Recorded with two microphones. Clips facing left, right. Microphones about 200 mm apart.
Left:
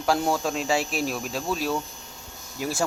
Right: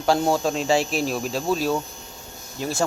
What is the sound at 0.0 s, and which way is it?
Speech, 30° right (ahead or behind).